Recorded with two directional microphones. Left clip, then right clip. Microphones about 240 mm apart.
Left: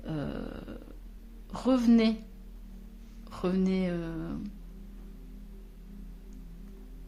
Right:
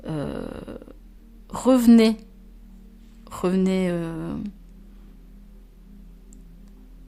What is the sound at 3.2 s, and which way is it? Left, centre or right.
Speech, right.